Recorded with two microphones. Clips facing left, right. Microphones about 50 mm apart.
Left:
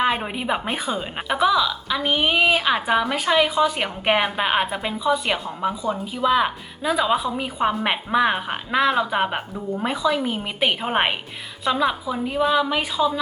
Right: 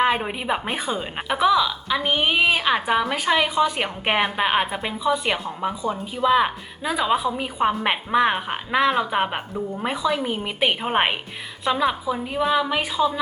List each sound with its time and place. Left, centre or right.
0.0 s a woman's voice: centre